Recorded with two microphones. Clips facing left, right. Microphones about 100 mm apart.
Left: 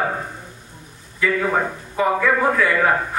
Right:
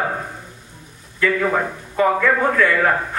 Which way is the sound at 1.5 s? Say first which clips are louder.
Even; 15° left (ahead or behind).